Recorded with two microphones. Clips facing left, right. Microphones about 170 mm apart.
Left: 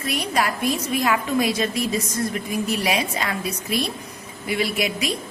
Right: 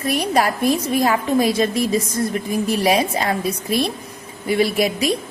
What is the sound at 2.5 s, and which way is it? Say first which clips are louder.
A woman's voice: right 6 dB; 45° right (ahead or behind).